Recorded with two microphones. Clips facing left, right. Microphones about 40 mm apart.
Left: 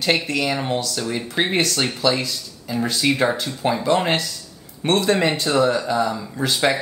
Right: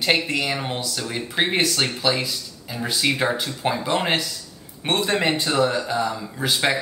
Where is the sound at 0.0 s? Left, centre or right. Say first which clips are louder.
Left 1 dB; centre.